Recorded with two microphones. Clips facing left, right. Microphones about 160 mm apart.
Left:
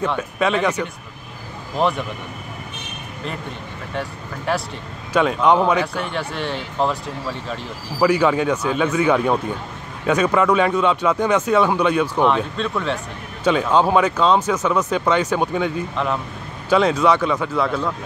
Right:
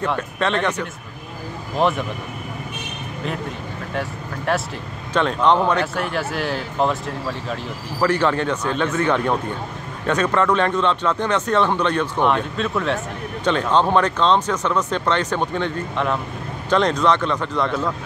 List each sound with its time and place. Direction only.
0.0 s speech: 5° left (ahead or behind)
3.9 s speech: centre (ahead or behind)
12.3 s speech: centre (ahead or behind)